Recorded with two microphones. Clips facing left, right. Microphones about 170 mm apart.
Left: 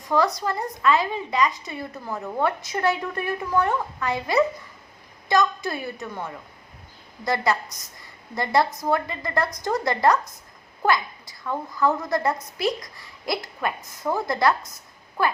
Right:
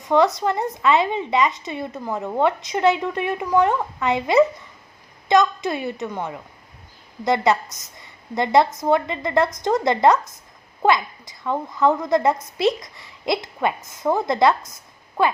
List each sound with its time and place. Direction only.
0.0 s speech: 25° right (ahead or behind)